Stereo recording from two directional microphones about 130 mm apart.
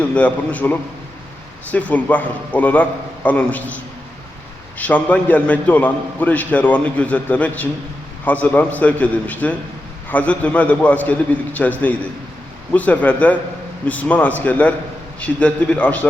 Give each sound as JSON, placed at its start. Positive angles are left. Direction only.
{"t": 0.0, "sound": "a man's voice", "side_deg": 10}
{"t": 4.8, "sound": "a man's voice", "side_deg": 10}